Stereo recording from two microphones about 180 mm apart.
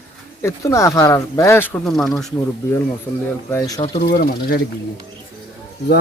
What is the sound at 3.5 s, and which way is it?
Speech, 15° left (ahead or behind).